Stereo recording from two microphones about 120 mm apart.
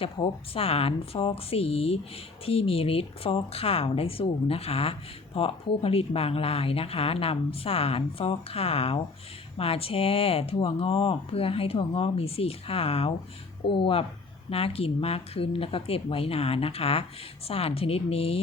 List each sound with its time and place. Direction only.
0.0 s speech: 50° left (ahead or behind)